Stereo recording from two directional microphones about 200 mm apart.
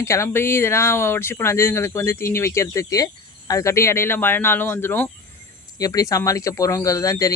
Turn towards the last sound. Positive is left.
turn(degrees=15)  # may be behind; listen again after turning